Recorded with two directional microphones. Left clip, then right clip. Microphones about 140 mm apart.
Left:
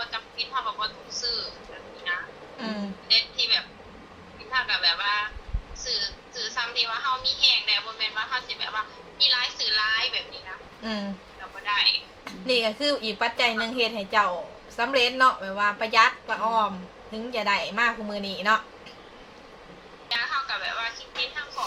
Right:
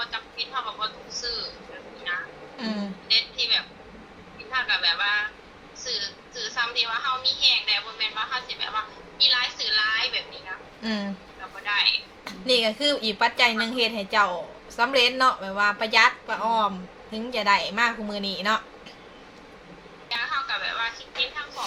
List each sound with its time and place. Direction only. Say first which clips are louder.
0.0 s a sound: right 1 dB; centre (ahead or behind)
2.1 s music: even; centre (ahead or behind)
2.6 s a sound: right 1 dB; 30° right (ahead or behind)
3.1 s a sound: even; centre (ahead or behind)
5.8 s a woman's voice: left 1 dB; centre (ahead or behind)
10.8 s a woman's voice: right 2 dB; 30° right (ahead or behind)
11.6 s speech: even; centre (ahead or behind)
12.2 s a woman's voice: right 3 dB; 25° right (ahead or behind)
20.1 s music: even; centre (ahead or behind)